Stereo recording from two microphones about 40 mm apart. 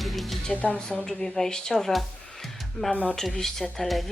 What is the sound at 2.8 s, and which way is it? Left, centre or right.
Speech, left.